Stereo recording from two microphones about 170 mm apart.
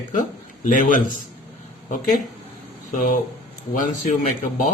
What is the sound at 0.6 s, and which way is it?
Speech, 50° left (ahead or behind).